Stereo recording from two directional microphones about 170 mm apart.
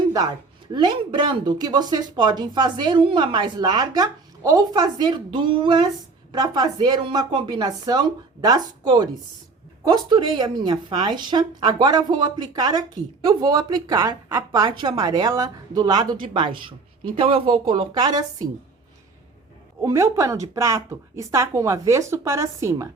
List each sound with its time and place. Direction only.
0.1 s a woman's voice: 20° right (ahead or behind)
19.8 s a woman's voice: 15° right (ahead or behind)